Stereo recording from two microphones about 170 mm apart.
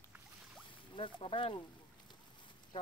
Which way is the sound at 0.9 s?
30° left (ahead or behind).